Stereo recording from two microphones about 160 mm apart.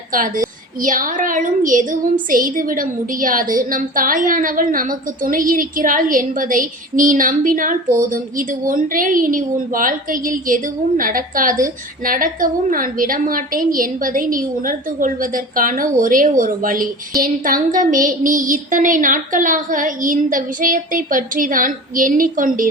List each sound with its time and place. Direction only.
0.1 s a woman's voice: 60° right (ahead or behind)